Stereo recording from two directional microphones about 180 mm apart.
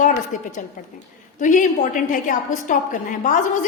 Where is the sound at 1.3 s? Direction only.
45° left (ahead or behind).